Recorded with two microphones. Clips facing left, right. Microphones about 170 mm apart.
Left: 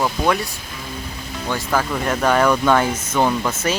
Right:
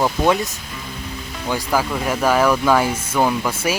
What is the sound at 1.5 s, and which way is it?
Speech, 10° right (ahead or behind).